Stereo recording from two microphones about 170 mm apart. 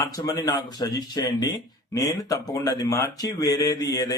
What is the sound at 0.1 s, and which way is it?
A man's voice, 20° left (ahead or behind).